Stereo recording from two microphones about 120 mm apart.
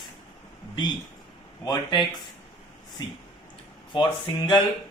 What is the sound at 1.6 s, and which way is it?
Speech, 35° left (ahead or behind).